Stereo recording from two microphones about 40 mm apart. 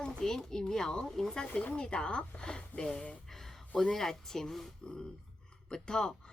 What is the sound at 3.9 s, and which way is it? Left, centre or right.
A woman's voice, centre.